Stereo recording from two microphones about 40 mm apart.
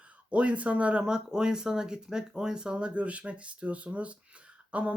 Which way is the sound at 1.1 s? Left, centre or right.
Centre.